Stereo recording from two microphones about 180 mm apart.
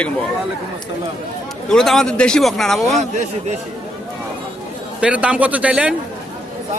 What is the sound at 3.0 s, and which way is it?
Speech, 40° right (ahead or behind).